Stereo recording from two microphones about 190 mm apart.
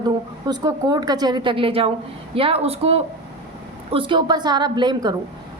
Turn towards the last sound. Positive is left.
turn(degrees=-20)  # may be behind; listen again after turning